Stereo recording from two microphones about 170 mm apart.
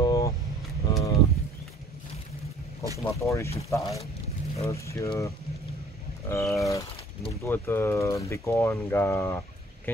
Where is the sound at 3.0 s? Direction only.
15° left (ahead or behind).